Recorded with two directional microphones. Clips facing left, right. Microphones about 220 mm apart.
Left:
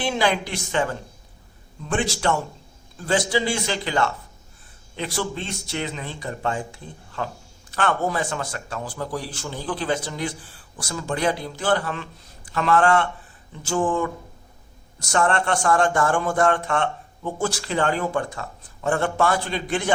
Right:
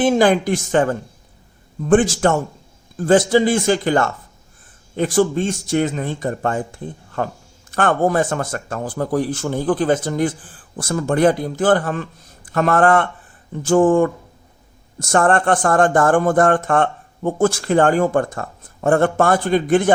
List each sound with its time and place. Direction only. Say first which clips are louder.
0.0 s speech: right 9 dB; 50° right (ahead or behind)